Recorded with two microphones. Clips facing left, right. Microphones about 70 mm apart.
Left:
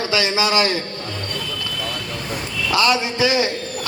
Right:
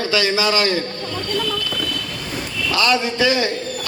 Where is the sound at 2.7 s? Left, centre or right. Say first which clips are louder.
Even; left.